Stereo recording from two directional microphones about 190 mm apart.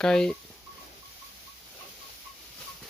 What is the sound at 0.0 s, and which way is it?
Speech, 5° left (ahead or behind).